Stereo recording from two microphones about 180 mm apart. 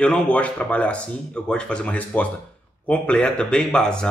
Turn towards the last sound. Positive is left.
turn(degrees=5)  # may be behind; listen again after turning